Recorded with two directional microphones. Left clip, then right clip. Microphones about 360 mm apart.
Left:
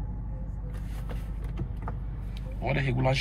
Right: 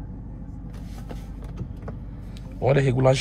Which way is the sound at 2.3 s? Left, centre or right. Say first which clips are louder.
Right 10 dB; right.